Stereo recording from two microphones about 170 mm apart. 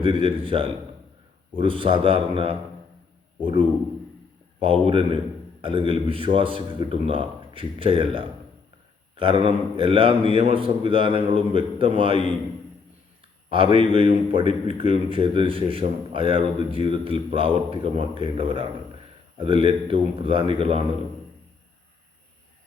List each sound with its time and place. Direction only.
0.0 s a man's voice: 30° right (ahead or behind)
4.6 s a man's voice: 35° right (ahead or behind)
13.5 s a man's voice: 30° right (ahead or behind)